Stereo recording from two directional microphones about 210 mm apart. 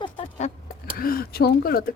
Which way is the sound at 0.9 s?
45° left (ahead or behind).